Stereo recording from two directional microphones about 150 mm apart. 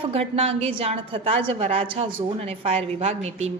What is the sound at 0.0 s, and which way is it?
A woman's voice, 40° right (ahead or behind).